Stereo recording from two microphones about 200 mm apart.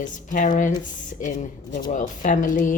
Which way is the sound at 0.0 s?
40° left (ahead or behind).